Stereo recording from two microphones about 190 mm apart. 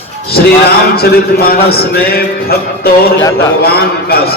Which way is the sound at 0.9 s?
55° left (ahead or behind).